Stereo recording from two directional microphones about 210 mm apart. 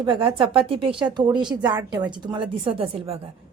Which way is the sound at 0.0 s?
25° right (ahead or behind).